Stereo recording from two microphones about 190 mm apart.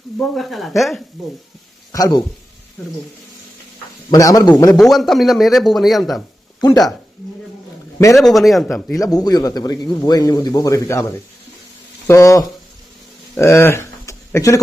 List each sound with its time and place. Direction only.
0.2 s speech: centre (ahead or behind)
1.9 s speech: 20° left (ahead or behind)
4.1 s speech: 20° left (ahead or behind)
4.8 s speech: centre (ahead or behind)
8.1 s speech: centre (ahead or behind)
9.0 s speech: 20° left (ahead or behind)
12.0 s speech: 15° left (ahead or behind)
13.3 s a sound: 15° left (ahead or behind)